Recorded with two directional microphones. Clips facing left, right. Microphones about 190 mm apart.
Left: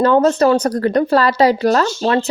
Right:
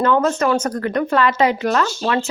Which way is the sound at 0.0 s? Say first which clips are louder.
Left 5 dB; 35° left (ahead or behind).